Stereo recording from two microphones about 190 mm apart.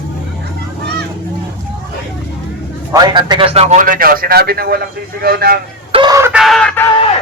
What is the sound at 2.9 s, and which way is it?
A man's voice, 20° right (ahead or behind).